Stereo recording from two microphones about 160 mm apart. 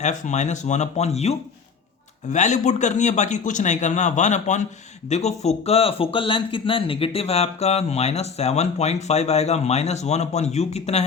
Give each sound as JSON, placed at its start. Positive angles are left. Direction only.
{"t": 0.0, "sound": "speech", "side_deg": 50}